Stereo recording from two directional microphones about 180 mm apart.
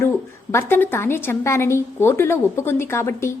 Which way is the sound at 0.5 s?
10° left (ahead or behind).